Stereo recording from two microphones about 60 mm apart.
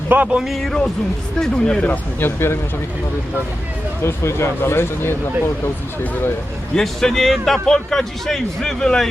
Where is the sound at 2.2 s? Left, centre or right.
Left.